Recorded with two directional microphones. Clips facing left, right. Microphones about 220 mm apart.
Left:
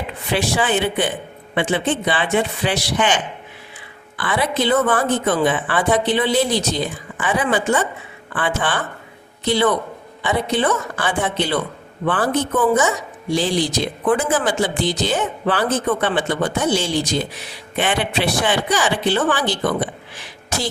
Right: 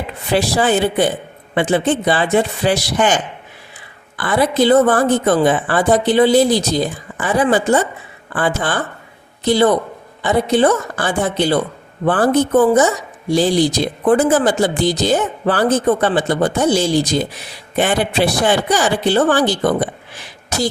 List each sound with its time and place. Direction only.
0.3 s speech: 40° right (ahead or behind)
4.2 s speech: 40° right (ahead or behind)